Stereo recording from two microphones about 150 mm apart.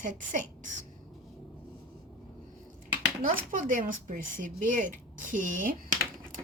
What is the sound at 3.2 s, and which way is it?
A woman's voice, 65° right (ahead or behind).